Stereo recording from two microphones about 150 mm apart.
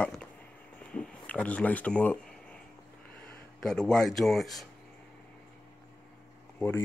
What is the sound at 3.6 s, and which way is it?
Speech, 5° left (ahead or behind).